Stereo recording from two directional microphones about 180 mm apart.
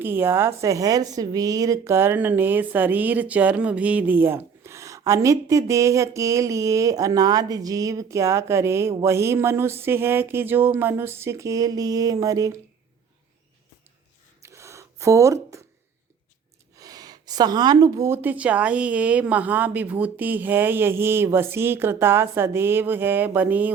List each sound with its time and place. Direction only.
0.0 s a woman's voice: 10° right (ahead or behind)
14.4 s a sound: 15° right (ahead or behind)
16.7 s a woman's voice: 20° right (ahead or behind)